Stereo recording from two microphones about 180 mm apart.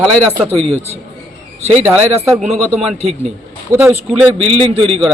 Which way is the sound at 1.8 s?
10° right (ahead or behind).